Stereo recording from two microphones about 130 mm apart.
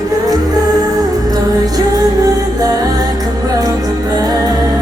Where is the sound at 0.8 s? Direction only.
30° right (ahead or behind).